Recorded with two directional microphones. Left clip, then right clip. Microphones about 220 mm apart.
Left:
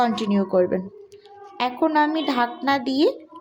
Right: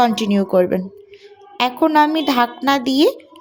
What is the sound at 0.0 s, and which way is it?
Speech, 50° right (ahead or behind).